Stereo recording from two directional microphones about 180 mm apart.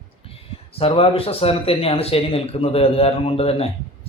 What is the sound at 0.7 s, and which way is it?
Speech, 30° left (ahead or behind).